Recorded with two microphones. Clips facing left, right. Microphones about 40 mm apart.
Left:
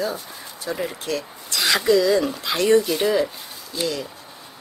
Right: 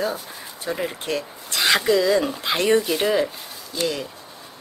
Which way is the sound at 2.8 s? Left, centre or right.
Centre.